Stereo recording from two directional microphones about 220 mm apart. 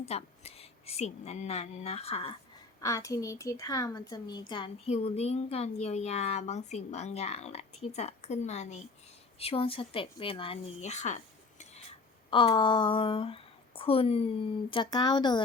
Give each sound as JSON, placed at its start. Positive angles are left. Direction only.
{"t": 0.0, "sound": "a woman's voice", "side_deg": 30}
{"t": 2.8, "sound": "a woman's voice", "side_deg": 15}